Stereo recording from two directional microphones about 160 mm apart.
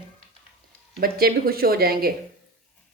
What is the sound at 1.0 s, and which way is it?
A woman's voice, 70° right (ahead or behind).